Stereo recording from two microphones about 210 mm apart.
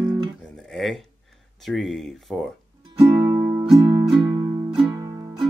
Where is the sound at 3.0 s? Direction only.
15° right (ahead or behind).